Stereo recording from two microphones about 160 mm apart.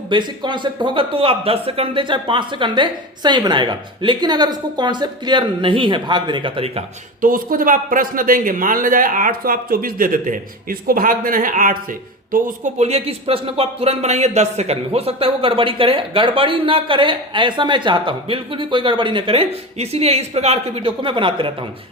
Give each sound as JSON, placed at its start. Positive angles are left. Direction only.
{"t": 0.1, "sound": "speech", "side_deg": -30}
{"t": 7.2, "sound": "a man's voice", "side_deg": -60}
{"t": 12.8, "sound": "speech", "side_deg": -40}